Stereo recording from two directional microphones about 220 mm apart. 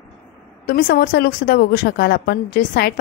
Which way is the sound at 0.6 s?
45° left (ahead or behind).